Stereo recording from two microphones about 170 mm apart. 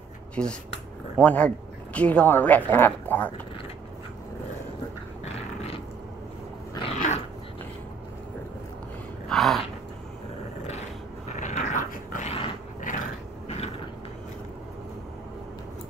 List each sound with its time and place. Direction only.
0.4 s speech: 5° left (ahead or behind)
5.2 s dog: 35° left (ahead or behind)
6.8 s dog: 40° left (ahead or behind)
9.3 s a sound: centre (ahead or behind)
11.3 s dog: 45° left (ahead or behind)
12.8 s a sound: 50° left (ahead or behind)